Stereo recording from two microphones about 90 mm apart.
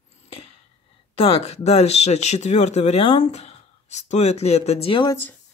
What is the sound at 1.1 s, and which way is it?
Speech, 90° left.